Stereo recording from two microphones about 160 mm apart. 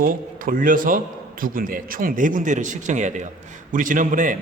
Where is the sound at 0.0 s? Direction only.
60° right (ahead or behind).